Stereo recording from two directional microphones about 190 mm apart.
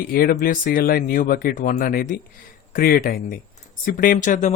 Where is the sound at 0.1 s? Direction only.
50° left (ahead or behind).